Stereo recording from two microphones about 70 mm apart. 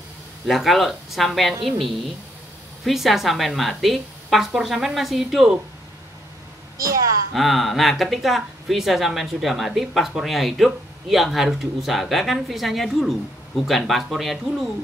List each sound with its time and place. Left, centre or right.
0.5 s speech: centre
2.8 s speech: centre
6.8 s a woman's voice: right
7.3 s speech: centre